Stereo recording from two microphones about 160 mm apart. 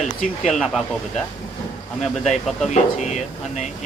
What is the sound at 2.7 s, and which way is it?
Speech, 45° left (ahead or behind).